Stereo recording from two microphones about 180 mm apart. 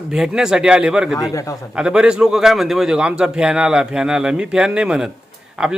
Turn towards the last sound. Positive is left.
turn(degrees=-5)  # may be behind; listen again after turning